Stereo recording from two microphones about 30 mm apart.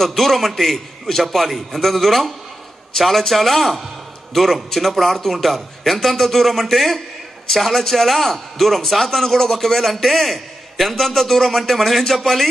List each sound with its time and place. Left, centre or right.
0.0 s speech: centre
0.7 s a man's voice: centre
1.2 s a man's voice: centre
3.6 s speech: centre
4.3 s a man's voice: centre